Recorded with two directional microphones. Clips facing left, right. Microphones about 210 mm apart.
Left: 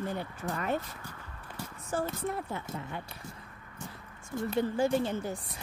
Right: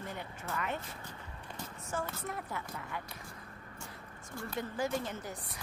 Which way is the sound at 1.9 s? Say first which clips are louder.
Left 6 dB; 30° left (ahead or behind).